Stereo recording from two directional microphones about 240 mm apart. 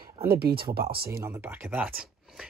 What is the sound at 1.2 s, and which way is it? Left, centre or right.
Speech, centre.